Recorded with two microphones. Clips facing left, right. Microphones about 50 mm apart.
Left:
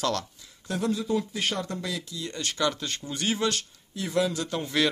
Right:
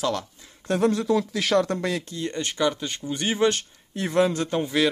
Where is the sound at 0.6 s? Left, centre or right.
Right.